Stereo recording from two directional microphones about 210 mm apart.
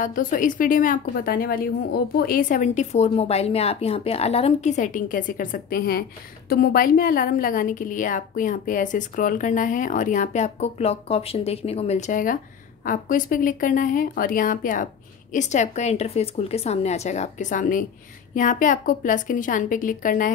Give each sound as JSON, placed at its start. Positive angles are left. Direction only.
{"t": 0.0, "sound": "a woman's voice", "side_deg": 40}